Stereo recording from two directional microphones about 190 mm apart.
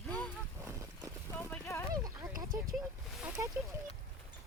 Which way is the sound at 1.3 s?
10° left (ahead or behind).